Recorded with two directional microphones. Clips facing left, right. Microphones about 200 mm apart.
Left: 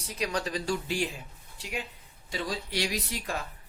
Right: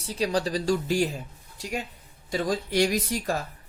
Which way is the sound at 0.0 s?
30° right (ahead or behind).